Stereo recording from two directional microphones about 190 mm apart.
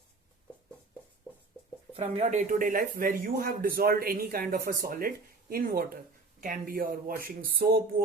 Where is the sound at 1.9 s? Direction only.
35° right (ahead or behind).